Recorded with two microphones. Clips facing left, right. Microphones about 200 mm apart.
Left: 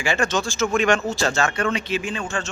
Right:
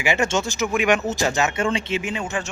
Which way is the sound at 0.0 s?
20° right (ahead or behind).